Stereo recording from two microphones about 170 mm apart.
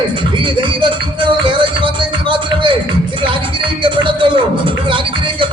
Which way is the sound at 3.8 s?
30° right (ahead or behind).